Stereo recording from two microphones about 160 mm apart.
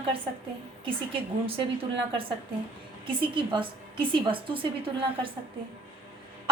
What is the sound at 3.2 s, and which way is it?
A woman's voice, 30° right (ahead or behind).